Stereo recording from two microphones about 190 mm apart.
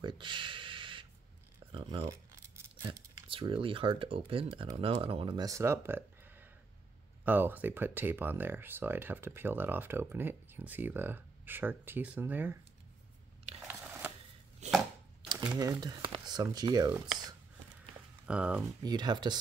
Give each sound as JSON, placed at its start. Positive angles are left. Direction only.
{"t": 0.0, "sound": "a sound", "side_deg": -25}
{"t": 3.3, "sound": "speech", "side_deg": -25}
{"t": 13.7, "sound": "a sound", "side_deg": -10}
{"t": 14.6, "sound": "chopping", "side_deg": -40}
{"t": 15.3, "sound": "speech", "side_deg": -15}
{"t": 18.2, "sound": "speech", "side_deg": -5}
{"t": 18.9, "sound": "speech", "side_deg": -20}